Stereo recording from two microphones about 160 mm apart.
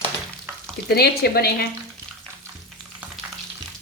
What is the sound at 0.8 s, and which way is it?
Speech, 75° left (ahead or behind).